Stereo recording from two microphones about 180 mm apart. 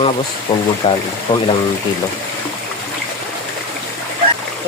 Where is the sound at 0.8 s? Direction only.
30° left (ahead or behind).